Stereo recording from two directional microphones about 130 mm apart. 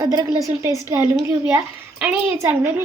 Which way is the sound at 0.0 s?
25° right (ahead or behind).